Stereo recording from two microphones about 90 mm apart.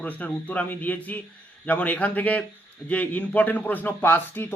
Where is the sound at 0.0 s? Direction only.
20° left (ahead or behind).